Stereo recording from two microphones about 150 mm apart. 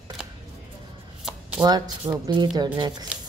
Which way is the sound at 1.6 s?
25° right (ahead or behind).